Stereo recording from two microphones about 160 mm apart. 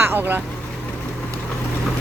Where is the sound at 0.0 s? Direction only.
15° right (ahead or behind).